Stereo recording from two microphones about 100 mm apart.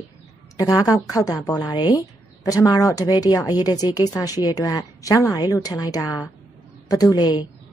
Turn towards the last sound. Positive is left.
turn(degrees=45)  # may be behind; listen again after turning